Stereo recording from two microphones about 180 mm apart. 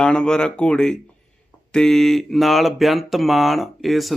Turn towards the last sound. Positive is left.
turn(degrees=0)  # may be behind; listen again after turning